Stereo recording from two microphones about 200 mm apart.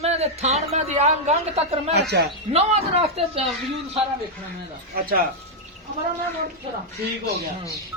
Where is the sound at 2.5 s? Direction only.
30° right (ahead or behind).